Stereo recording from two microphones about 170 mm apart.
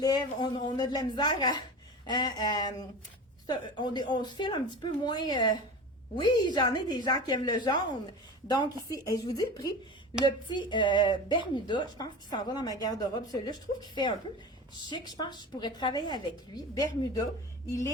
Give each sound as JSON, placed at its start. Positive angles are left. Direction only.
{"t": 0.0, "sound": "a woman's voice", "side_deg": 25}